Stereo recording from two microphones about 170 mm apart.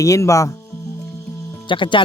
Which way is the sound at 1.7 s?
30° left (ahead or behind).